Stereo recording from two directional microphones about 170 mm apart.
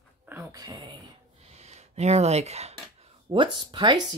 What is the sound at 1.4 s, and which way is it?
Speech, 40° right (ahead or behind).